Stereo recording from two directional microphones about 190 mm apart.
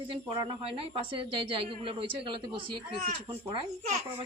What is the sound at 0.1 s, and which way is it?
Speech, 25° right (ahead or behind).